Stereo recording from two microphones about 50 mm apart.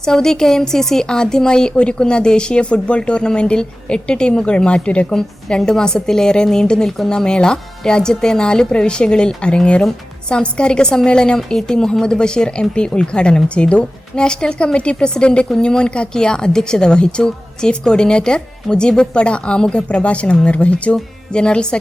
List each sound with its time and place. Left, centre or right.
0.0 s a woman's voice: centre